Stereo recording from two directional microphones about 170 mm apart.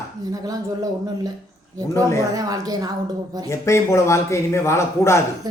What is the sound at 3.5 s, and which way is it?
Speech, 15° left (ahead or behind).